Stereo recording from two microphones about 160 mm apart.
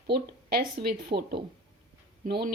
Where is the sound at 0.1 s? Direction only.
75° right (ahead or behind).